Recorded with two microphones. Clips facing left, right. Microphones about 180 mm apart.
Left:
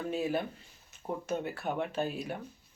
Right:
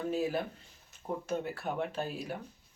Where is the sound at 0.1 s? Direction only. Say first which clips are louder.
Left 2 dB; centre (ahead or behind).